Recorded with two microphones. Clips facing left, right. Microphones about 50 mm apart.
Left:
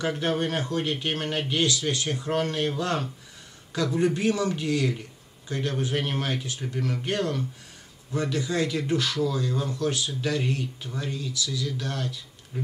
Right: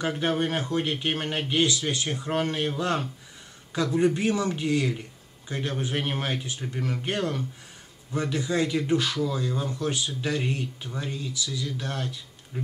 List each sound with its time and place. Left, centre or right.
0.2 s speech: centre